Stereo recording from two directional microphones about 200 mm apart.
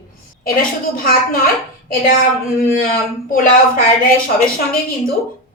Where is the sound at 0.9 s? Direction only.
45° left (ahead or behind).